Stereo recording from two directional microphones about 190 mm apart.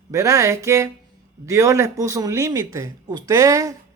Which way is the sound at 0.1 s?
15° right (ahead or behind).